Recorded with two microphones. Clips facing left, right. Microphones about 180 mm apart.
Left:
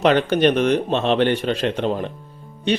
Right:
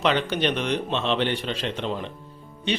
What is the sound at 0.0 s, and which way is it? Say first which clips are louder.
A man's voice: left 7 dB; 50° left (ahead or behind).